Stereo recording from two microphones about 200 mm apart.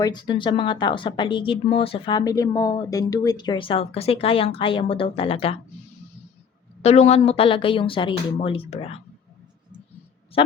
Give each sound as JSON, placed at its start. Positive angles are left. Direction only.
{"t": 0.0, "sound": "speech", "side_deg": 20}
{"t": 6.8, "sound": "speech", "side_deg": 30}
{"t": 10.4, "sound": "speech", "side_deg": 25}